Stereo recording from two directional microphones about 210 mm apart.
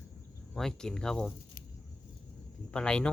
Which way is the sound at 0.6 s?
Centre (ahead or behind).